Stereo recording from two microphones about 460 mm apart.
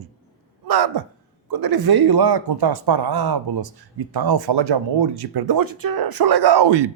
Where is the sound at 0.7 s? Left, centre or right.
Right.